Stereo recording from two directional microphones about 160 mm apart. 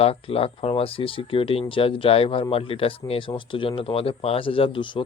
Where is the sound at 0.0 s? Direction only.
40° left (ahead or behind).